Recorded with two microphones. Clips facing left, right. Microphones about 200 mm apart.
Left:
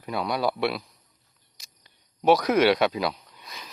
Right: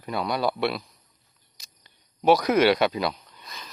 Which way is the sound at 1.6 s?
Centre (ahead or behind).